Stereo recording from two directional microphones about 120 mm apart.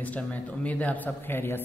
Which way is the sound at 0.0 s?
10° left (ahead or behind).